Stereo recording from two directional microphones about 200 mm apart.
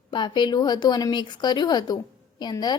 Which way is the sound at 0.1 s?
25° left (ahead or behind).